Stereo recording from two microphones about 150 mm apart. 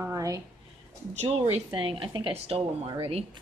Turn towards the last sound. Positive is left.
turn(degrees=-40)  # may be behind; listen again after turning